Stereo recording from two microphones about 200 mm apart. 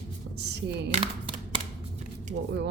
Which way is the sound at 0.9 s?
25° right (ahead or behind).